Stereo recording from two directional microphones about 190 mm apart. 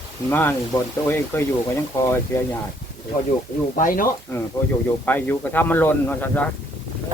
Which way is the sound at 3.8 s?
45° left (ahead or behind).